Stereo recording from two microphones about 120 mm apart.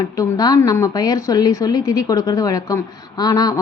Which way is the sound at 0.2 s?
30° left (ahead or behind).